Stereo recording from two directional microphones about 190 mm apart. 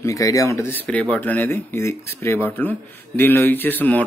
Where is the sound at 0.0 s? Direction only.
15° left (ahead or behind).